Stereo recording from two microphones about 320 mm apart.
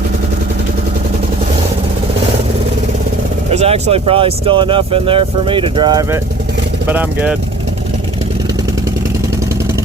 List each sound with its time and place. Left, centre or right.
3.5 s speech: centre